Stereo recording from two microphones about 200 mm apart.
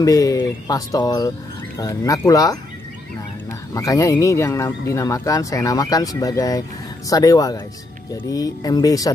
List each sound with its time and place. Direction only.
0.0 s speech: 15° left (ahead or behind)
3.7 s speech: 15° left (ahead or behind)